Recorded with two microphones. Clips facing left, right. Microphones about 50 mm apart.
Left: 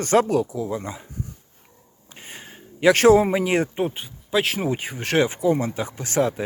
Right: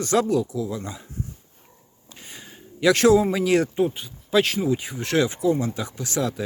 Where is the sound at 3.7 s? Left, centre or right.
Left.